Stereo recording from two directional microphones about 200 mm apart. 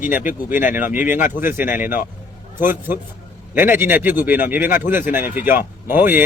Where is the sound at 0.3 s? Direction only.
40° left (ahead or behind).